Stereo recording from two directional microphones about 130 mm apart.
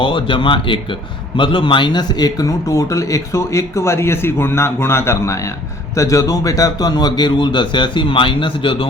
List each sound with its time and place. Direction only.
0.0 s a man's voice: 40° left (ahead or behind)